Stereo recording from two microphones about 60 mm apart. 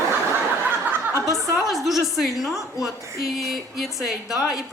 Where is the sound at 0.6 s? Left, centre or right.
Right.